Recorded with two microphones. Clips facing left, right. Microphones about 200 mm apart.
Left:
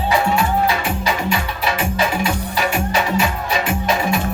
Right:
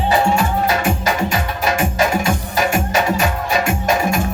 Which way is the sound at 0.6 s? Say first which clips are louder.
Right 2 dB; 45° right (ahead or behind).